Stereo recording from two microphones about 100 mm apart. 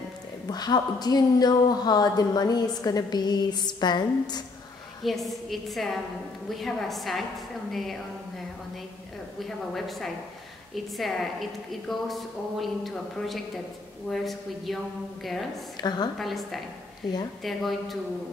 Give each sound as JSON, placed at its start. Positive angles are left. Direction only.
{"t": 0.5, "sound": "a woman's voice", "side_deg": 45}
{"t": 5.0, "sound": "a woman's voice", "side_deg": 0}
{"t": 9.8, "sound": "a woman's voice", "side_deg": 0}
{"t": 15.8, "sound": "a woman's voice", "side_deg": 45}
{"t": 16.2, "sound": "a woman's voice", "side_deg": 0}